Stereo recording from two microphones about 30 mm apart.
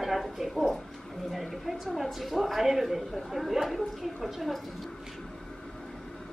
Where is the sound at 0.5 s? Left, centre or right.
Centre.